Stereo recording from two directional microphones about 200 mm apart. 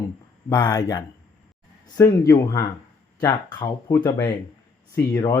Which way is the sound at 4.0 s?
10° left (ahead or behind).